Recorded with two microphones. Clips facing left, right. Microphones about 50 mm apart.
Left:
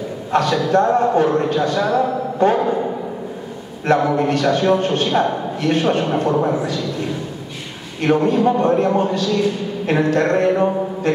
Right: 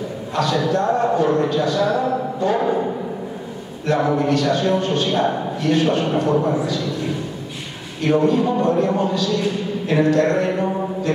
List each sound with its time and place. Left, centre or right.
0.3 s a man's voice: left
3.8 s a man's voice: left
8.0 s a man's voice: left
10.6 s mantra: left